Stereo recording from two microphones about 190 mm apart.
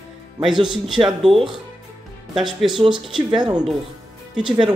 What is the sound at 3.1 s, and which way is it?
Speech, 25° right (ahead or behind).